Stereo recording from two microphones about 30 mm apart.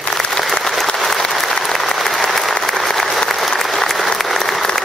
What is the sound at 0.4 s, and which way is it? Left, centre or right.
Applause, centre.